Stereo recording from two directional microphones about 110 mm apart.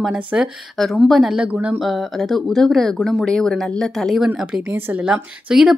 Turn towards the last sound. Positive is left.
turn(degrees=-5)  # may be behind; listen again after turning